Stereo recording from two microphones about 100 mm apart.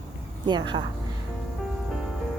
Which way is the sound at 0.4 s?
50° right (ahead or behind).